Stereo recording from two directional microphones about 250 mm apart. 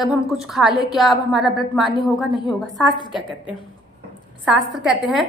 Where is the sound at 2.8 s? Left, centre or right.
Centre.